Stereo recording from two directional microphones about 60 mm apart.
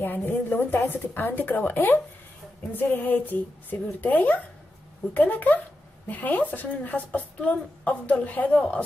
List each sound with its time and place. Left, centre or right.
0.0 s a woman's voice: left; by 8.8 s centre